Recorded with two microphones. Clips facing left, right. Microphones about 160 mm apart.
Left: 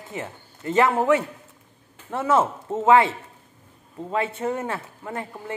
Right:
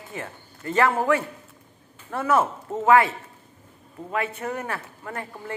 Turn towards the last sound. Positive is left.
turn(degrees=20)  # may be behind; listen again after turning